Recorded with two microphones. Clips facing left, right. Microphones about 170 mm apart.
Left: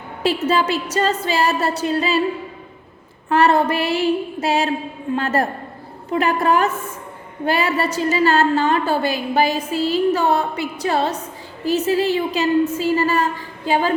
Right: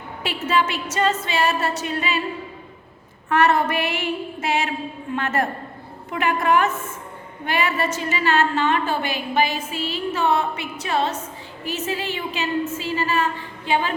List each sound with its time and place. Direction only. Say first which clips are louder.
0.2 s a woman's voice: left 4 dB; 35° left (ahead or behind)
3.2 s a woman's voice: left 3 dB; 30° left (ahead or behind)